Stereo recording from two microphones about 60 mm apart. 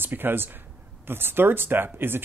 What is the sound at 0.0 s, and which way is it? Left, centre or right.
Speech, right.